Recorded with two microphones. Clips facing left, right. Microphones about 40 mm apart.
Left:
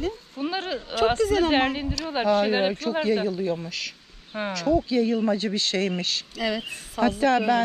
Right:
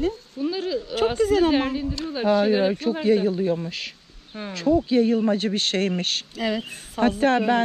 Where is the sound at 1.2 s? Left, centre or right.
Left.